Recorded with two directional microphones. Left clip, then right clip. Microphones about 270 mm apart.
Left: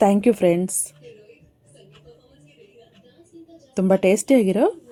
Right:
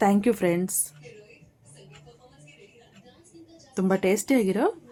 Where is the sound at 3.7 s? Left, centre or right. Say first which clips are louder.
Left 6 dB; centre.